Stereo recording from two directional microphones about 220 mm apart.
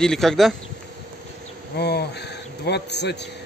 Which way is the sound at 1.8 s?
50° left (ahead or behind).